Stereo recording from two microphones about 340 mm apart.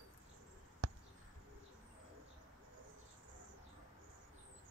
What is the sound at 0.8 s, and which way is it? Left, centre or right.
Basketball bounce, right.